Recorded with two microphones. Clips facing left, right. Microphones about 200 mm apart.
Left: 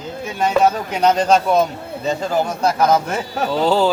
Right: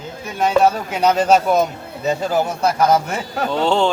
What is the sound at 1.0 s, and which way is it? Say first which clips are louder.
Speech: even; 5° right (ahead or behind).